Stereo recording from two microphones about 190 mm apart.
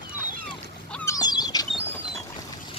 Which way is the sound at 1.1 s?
20° left (ahead or behind).